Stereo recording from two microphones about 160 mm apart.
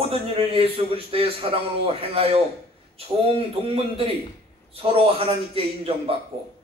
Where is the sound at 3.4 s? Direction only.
35° right (ahead or behind).